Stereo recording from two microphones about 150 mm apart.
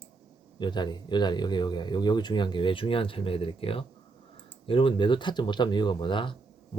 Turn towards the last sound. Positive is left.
turn(degrees=35)  # may be behind; listen again after turning